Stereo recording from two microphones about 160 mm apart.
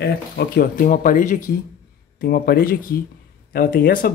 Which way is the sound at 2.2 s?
70° left (ahead or behind).